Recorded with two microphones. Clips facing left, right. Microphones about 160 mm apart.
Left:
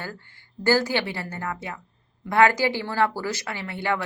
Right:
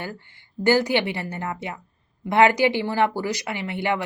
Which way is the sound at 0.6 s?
20° right (ahead or behind).